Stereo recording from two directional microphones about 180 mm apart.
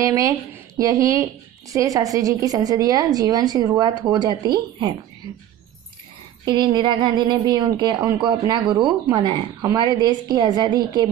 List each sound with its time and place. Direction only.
0.0 s a woman's voice: 20° right (ahead or behind)
6.4 s a woman's voice: 25° right (ahead or behind)